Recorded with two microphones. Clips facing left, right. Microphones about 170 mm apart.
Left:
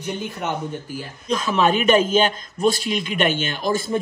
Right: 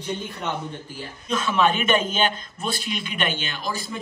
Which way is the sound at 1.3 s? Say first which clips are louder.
Left 2 dB; 35° left (ahead or behind).